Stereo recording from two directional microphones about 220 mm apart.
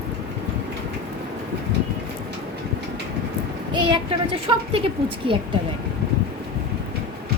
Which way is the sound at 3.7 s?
20° right (ahead or behind).